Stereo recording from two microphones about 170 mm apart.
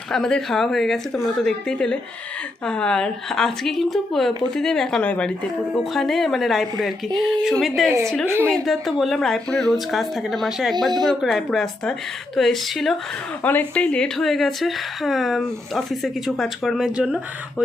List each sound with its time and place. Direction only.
0.1 s a woman's voice: 5° left (ahead or behind)
7.9 s a woman's voice: 15° right (ahead or behind)
8.4 s a woman's voice: centre (ahead or behind)